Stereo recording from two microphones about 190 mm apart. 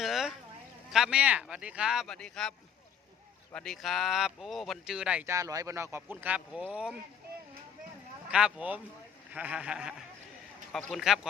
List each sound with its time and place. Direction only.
0.0 s a sound: centre (ahead or behind)
0.9 s speech: 5° right (ahead or behind)
8.3 s speech: 5° right (ahead or behind)